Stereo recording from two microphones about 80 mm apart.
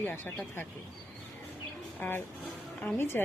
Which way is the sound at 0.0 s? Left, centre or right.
Left.